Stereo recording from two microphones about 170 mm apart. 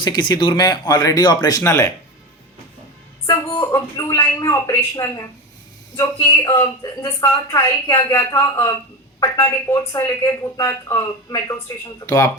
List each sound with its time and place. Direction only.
0.0 s speech: 25° left (ahead or behind)
3.6 s speech: 20° left (ahead or behind)